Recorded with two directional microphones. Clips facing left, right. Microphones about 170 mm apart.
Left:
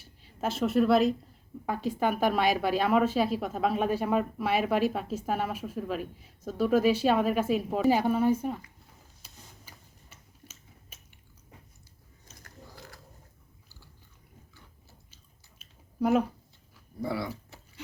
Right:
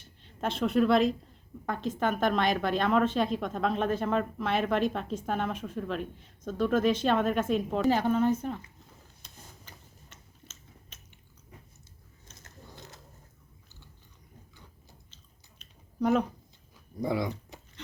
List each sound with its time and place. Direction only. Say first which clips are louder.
0.0 s a woman's voice: left 1 dB; 5° left (ahead or behind)
9.2 s tick-tock: right 1 dB; 10° left (ahead or behind)
12.4 s gears: left 1 dB; 20° right (ahead or behind)
15.1 s chewing: right 1 dB; 5° left (ahead or behind)
17.0 s speech: right 3 dB; 15° right (ahead or behind)
17.5 s a sound: right 3 dB; 15° right (ahead or behind)